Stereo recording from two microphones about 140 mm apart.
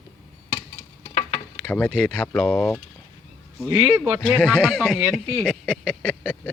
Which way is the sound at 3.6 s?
20° right (ahead or behind).